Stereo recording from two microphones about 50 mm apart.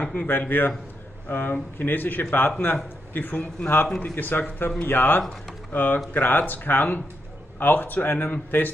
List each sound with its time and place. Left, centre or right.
0.0 s a man's voice: left